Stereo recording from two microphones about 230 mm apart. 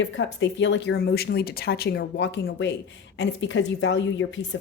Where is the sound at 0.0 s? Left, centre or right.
Left.